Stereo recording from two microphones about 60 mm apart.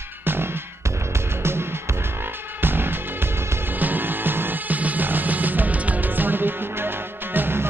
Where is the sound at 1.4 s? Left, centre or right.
Right.